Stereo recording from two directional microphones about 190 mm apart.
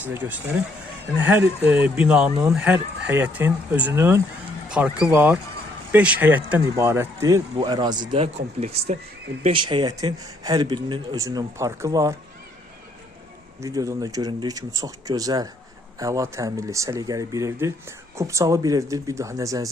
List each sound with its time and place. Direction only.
0.0 s speech: 10° right (ahead or behind)
13.6 s speech: 15° right (ahead or behind)